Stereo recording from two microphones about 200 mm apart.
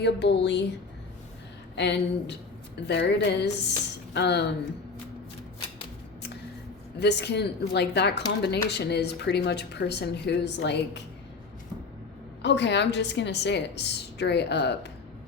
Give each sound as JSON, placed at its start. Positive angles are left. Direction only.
{"t": 0.0, "sound": "speech", "side_deg": 60}
{"t": 1.7, "sound": "speech", "side_deg": 60}
{"t": 7.0, "sound": "speech", "side_deg": 55}
{"t": 12.4, "sound": "speech", "side_deg": 60}